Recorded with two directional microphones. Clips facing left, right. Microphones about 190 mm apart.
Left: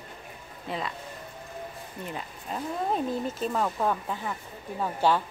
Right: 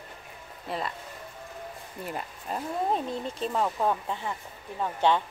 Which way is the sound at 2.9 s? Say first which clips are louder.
Left 2 dB; 5° left (ahead or behind).